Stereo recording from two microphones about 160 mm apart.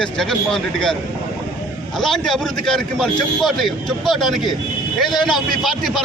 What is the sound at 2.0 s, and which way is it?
A man's voice, 5° left (ahead or behind).